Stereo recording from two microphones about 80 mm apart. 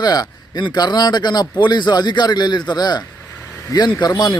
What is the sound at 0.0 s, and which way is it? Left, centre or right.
Speech, left.